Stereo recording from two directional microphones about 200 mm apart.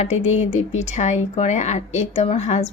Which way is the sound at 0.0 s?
35° left (ahead or behind).